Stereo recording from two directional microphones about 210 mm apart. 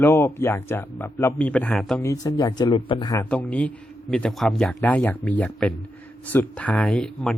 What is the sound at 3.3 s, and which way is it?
A man's voice, 5° left (ahead or behind).